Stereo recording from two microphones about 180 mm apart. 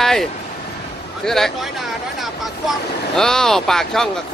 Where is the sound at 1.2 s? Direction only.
Centre (ahead or behind).